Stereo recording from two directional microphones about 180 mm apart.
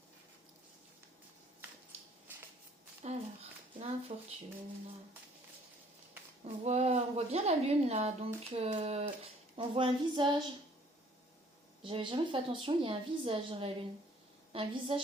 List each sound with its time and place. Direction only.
3.0 s a sound: 40° right (ahead or behind)
4.1 s a woman's voice: 35° right (ahead or behind)
6.4 s a woman's voice: 35° right (ahead or behind)
11.8 s a woman's voice: 30° right (ahead or behind)